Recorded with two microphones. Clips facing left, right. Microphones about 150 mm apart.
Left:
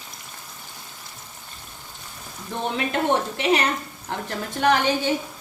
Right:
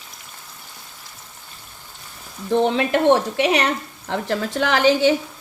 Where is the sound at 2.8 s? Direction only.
90° right.